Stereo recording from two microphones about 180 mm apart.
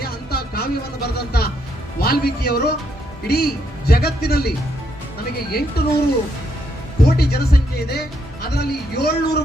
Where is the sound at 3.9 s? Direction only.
60° left (ahead or behind).